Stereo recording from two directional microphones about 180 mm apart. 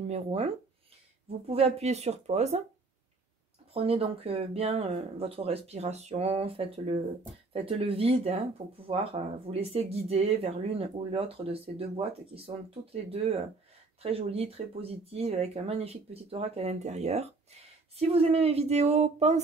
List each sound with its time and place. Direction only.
0.0 s speech: 35° right (ahead or behind)
1.5 s speech: 35° right (ahead or behind)
3.7 s speech: 35° right (ahead or behind)